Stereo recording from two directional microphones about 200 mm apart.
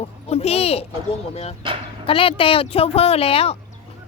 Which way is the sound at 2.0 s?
25° left (ahead or behind).